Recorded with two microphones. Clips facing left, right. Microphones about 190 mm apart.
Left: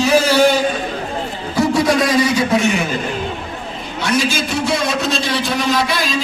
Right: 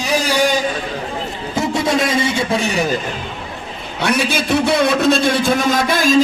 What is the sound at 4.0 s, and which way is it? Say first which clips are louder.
A man's voice: even; 60° right (ahead or behind).